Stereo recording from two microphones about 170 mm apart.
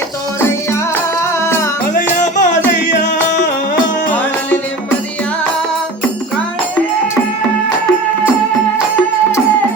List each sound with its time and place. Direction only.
2.0 s music: 50° left (ahead or behind)